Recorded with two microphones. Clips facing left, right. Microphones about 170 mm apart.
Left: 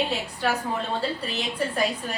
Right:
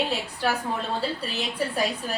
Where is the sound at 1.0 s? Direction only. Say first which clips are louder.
Even; 5° right (ahead or behind).